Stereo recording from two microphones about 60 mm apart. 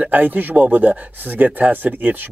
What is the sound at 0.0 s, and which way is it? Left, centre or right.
Speech, right.